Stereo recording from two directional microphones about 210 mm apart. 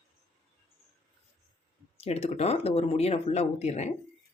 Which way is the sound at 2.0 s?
30° left (ahead or behind).